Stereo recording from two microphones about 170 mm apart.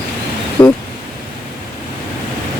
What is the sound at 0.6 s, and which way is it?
Speech, 30° left (ahead or behind).